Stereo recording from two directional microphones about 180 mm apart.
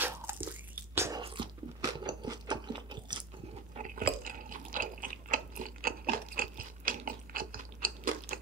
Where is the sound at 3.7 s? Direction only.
45° right (ahead or behind).